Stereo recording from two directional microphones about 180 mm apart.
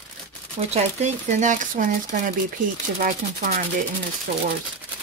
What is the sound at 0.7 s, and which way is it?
Speech, 40° right (ahead or behind).